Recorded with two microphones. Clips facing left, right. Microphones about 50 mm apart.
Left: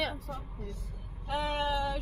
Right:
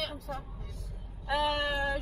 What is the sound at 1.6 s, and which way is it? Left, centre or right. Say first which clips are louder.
Speech: even; right.